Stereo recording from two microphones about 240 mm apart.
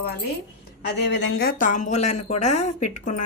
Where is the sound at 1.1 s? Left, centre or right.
Left.